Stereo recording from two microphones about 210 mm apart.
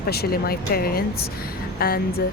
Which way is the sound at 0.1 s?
45° left (ahead or behind).